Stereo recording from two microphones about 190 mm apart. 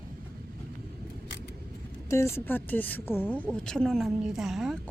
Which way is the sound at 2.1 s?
15° left (ahead or behind).